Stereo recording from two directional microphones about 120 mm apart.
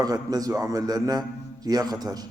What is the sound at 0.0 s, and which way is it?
A man's voice, 30° right (ahead or behind).